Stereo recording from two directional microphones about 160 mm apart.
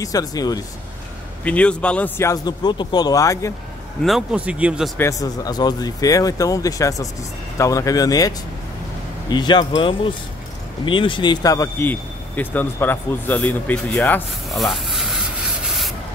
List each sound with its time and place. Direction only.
0.0 s a man's voice: 20° left (ahead or behind)
1.4 s a man's voice: 10° left (ahead or behind)
4.0 s speech: 5° right (ahead or behind)
4.9 s a man's voice: 20° left (ahead or behind); by 15.0 s centre (ahead or behind)